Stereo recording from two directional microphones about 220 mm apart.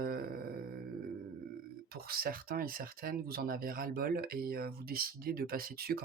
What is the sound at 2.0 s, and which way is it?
Speech, 40° right (ahead or behind).